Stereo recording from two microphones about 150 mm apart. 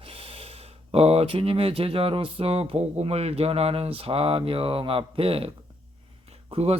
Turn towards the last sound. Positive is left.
turn(degrees=-40)  # may be behind; listen again after turning